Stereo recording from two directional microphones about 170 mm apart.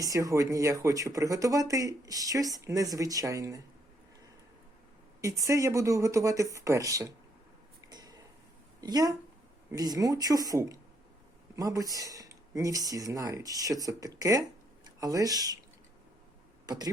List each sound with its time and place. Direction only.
0.0 s speech: 20° right (ahead or behind)
5.5 s speech: 15° right (ahead or behind)
7.9 s a sound: 25° right (ahead or behind)
8.8 s speech: 20° right (ahead or behind)
16.6 s speech: 25° right (ahead or behind)